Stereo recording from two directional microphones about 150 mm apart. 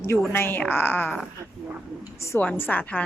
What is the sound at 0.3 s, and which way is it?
Speech, 15° left (ahead or behind).